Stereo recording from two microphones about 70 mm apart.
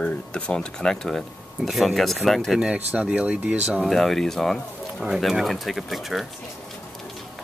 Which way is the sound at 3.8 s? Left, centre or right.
Centre.